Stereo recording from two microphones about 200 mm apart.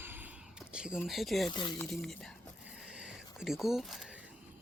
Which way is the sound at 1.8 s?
Centre (ahead or behind).